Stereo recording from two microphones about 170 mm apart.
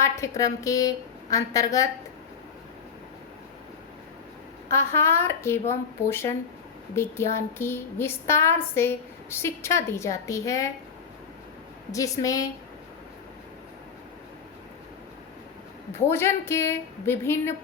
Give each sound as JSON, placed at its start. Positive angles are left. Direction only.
{"t": 0.0, "sound": "a woman's voice", "side_deg": 20}
{"t": 4.7, "sound": "a woman's voice", "side_deg": 15}
{"t": 11.9, "sound": "a woman's voice", "side_deg": 20}
{"t": 16.0, "sound": "a woman's voice", "side_deg": 15}